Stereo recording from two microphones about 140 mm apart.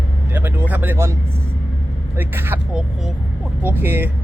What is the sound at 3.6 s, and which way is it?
Speech, 15° right (ahead or behind).